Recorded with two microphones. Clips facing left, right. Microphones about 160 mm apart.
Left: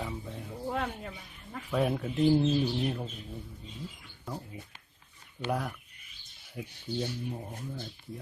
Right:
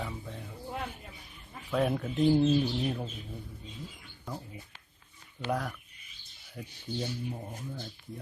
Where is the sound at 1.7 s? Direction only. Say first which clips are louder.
Even; centre (ahead or behind).